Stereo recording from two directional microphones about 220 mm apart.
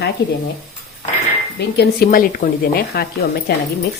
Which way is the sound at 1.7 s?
40° left (ahead or behind).